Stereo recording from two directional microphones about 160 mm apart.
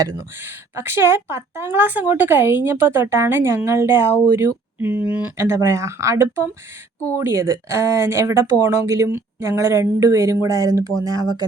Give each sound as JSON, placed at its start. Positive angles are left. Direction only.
{"t": 0.0, "sound": "speech", "side_deg": -15}